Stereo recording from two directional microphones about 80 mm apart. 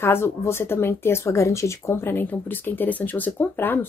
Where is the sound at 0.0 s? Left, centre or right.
Left.